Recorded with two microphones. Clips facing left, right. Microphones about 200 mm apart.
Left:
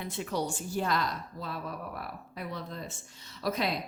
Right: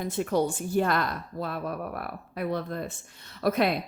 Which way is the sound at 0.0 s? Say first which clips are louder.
Right 7 dB; 50° right (ahead or behind).